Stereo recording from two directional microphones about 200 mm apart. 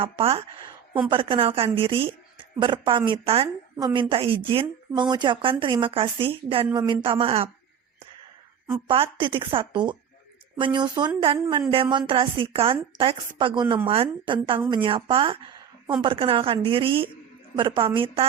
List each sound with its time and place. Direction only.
0.0 s a woman's voice: 30° right (ahead or behind)
8.9 s a woman's voice: 25° right (ahead or behind)